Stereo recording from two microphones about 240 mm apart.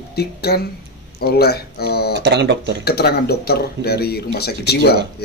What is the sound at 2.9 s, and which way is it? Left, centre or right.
Speech, left.